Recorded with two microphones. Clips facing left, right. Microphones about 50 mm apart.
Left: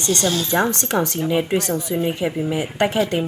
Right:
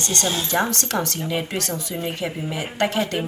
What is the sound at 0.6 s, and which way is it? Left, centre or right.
Speech, left.